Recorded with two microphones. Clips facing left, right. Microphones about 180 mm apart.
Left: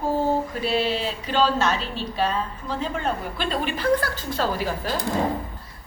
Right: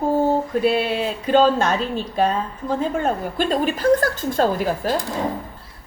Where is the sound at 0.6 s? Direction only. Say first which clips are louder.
Right 4 dB; 55° right (ahead or behind).